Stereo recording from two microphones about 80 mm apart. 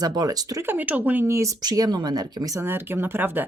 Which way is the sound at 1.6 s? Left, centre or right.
Right.